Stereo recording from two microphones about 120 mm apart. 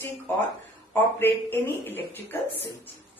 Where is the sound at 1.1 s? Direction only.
15° left (ahead or behind).